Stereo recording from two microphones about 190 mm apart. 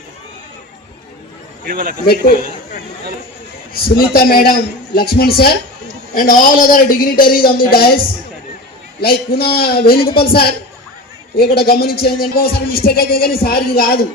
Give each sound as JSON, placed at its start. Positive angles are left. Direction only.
{"t": 1.6, "sound": "speech", "side_deg": -50}
{"t": 2.0, "sound": "a man's voice", "side_deg": 55}
{"t": 3.8, "sound": "a man's voice", "side_deg": 55}
{"t": 9.0, "sound": "a man's voice", "side_deg": 55}
{"t": 9.9, "sound": "speech", "side_deg": 30}
{"t": 10.2, "sound": "a man's voice", "side_deg": 55}